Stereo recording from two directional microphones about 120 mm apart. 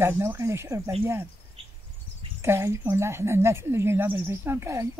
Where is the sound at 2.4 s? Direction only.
20° right (ahead or behind).